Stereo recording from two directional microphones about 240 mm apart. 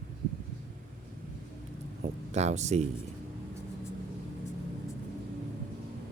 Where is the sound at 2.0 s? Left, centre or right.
Right.